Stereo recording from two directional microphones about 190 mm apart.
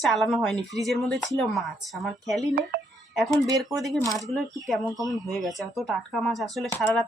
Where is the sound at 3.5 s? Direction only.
Centre (ahead or behind).